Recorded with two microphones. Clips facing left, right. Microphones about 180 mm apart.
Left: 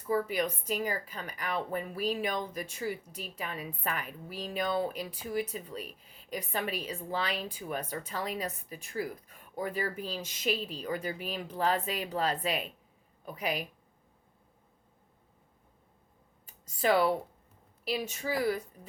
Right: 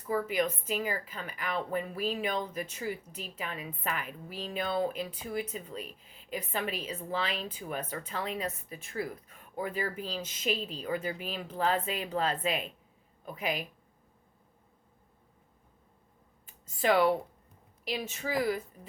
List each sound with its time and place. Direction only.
0.1 s a woman's voice: 40° left (ahead or behind)
16.8 s a woman's voice: 35° left (ahead or behind)